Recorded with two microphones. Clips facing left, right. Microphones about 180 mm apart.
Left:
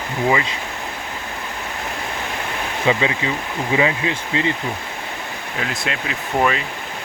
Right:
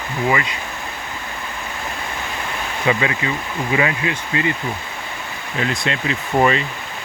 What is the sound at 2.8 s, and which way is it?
Speech, 25° left (ahead or behind).